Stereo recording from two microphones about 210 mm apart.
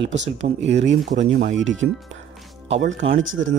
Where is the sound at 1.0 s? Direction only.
35° right (ahead or behind).